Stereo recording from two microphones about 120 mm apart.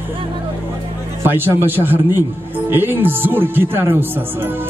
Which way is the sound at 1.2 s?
20° right (ahead or behind).